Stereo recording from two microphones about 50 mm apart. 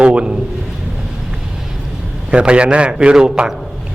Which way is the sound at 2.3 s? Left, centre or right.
Right.